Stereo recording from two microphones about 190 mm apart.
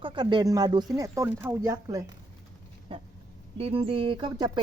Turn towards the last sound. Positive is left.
turn(degrees=-25)  # may be behind; listen again after turning